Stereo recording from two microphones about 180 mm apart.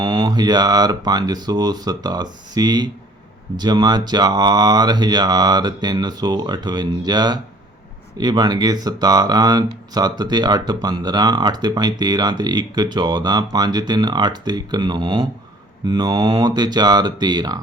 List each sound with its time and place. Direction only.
0.0 s speech: 20° right (ahead or behind)